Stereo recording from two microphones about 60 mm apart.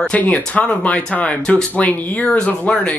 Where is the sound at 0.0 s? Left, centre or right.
Left.